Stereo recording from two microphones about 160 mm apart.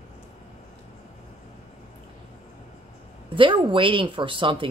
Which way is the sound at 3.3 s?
35° right (ahead or behind).